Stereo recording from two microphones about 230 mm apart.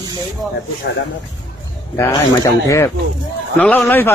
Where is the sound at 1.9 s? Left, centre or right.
Centre.